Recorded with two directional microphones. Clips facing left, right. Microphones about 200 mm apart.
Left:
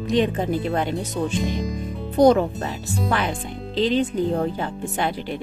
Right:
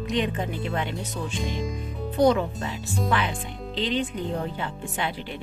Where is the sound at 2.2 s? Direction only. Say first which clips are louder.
Left 5 dB; 40° left (ahead or behind).